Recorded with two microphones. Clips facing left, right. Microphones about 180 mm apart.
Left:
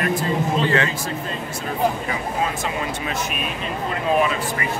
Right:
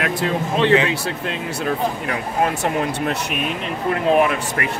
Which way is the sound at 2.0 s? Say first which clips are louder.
Right 3 dB; 65° right (ahead or behind).